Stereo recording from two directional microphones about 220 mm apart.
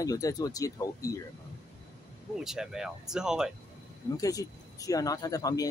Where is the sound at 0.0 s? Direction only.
15° left (ahead or behind).